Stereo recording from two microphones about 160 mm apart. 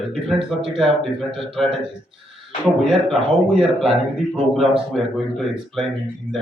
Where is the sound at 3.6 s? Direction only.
Centre (ahead or behind).